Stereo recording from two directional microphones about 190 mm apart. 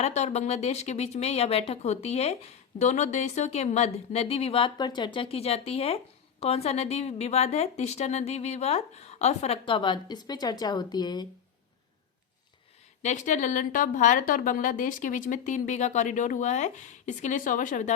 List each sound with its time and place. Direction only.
0.0 s speech: 35° left (ahead or behind); by 11.3 s 20° left (ahead or behind)
13.0 s speech: 40° left (ahead or behind)